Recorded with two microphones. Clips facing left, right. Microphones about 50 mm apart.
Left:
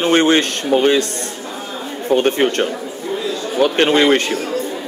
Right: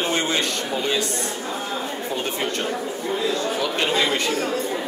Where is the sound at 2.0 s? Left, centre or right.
Left.